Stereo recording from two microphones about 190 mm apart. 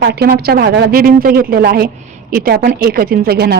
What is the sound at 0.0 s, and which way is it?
A woman's voice, 60° right (ahead or behind).